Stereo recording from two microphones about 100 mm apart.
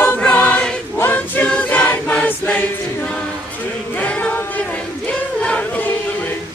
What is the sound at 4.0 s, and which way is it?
Choir, 15° left (ahead or behind).